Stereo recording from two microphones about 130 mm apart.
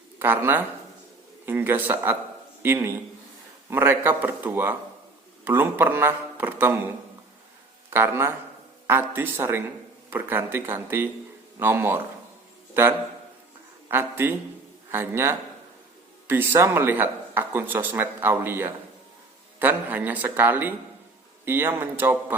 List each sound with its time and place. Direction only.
0.2 s a man's voice: 15° right (ahead or behind)
7.9 s a man's voice: 20° right (ahead or behind)
13.9 s a man's voice: 15° right (ahead or behind)